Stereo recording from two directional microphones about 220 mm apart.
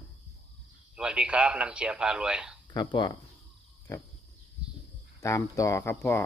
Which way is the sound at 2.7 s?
20° left (ahead or behind).